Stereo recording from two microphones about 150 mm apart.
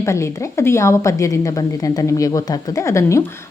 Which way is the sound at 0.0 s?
20° left (ahead or behind).